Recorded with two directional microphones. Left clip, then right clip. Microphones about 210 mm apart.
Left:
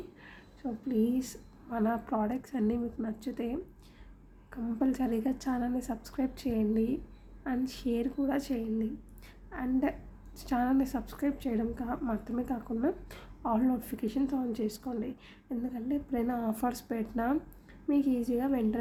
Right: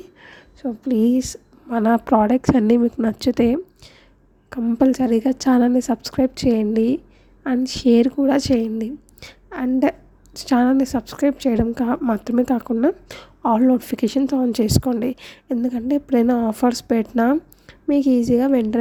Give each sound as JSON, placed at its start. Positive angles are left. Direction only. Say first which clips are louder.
{"t": 0.2, "sound": "a woman's voice", "louder": "right 12 dB", "side_deg": -45}